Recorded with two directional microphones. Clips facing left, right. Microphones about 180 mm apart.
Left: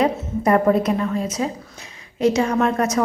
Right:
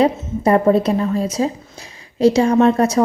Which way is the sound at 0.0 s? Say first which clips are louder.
Right 3 dB; 30° right (ahead or behind).